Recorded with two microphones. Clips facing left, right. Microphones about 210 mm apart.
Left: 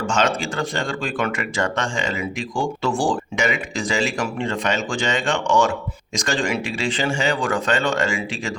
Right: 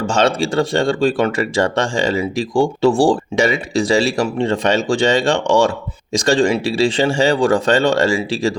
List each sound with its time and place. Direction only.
0.1 s speech: 30° right (ahead or behind)